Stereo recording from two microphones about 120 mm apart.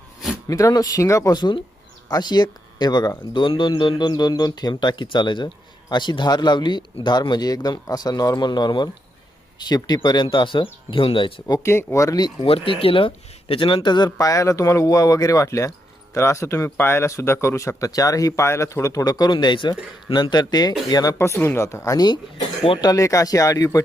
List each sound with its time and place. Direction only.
0.4 s speech: 30° left (ahead or behind); by 11.4 s 45° left (ahead or behind)
11.4 s speech: 25° left (ahead or behind)
12.4 s speech: 50° left (ahead or behind); by 22.0 s 25° left (ahead or behind)
22.6 s speech: 45° left (ahead or behind)
22.9 s speech: 25° left (ahead or behind)